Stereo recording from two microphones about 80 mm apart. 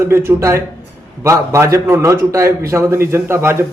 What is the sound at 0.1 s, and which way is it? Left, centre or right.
Speech, right.